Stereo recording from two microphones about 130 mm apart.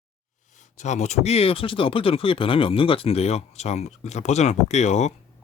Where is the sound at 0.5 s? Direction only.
70° left (ahead or behind).